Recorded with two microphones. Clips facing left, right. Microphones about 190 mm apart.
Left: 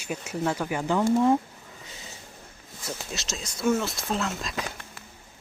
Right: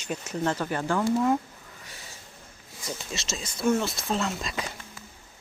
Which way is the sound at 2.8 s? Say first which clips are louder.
Even; centre (ahead or behind).